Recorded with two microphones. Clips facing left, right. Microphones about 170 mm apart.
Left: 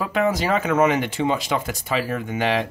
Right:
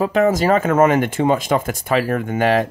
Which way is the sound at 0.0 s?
45° right (ahead or behind).